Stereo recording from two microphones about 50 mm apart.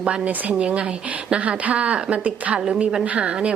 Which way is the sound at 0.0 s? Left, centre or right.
Centre.